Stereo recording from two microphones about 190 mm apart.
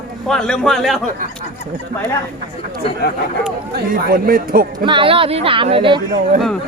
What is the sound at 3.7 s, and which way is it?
Speech, 50° right (ahead or behind).